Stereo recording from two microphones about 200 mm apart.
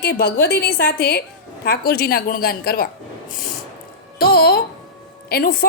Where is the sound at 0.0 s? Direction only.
55° left (ahead or behind).